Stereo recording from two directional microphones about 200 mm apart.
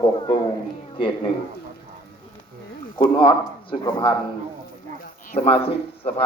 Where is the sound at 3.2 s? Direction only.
25° left (ahead or behind).